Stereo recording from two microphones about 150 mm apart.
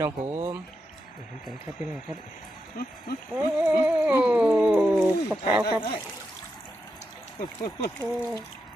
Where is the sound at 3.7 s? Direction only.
10° right (ahead or behind).